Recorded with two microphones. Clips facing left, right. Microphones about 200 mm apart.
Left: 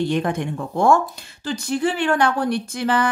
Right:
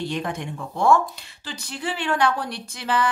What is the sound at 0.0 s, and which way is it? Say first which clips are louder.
Speech: left 6 dB; 50° left (ahead or behind).